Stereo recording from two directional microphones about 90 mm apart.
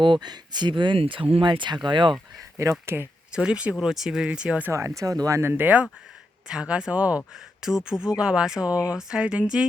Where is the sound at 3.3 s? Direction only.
10° right (ahead or behind).